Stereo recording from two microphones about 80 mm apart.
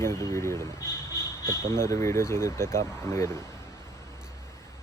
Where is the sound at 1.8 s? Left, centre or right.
Left.